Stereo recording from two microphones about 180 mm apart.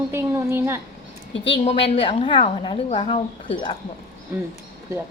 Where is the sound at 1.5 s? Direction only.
35° left (ahead or behind).